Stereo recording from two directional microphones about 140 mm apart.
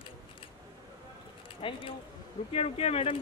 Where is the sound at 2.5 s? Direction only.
45° left (ahead or behind).